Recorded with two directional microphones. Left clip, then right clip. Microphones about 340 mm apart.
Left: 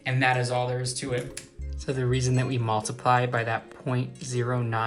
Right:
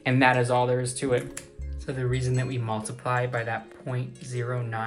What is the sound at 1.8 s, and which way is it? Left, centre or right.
Speech, centre.